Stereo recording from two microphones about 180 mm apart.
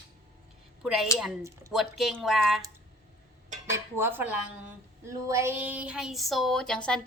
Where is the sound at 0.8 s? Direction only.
Centre (ahead or behind).